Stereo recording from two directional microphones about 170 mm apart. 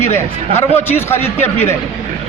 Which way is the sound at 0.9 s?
15° left (ahead or behind).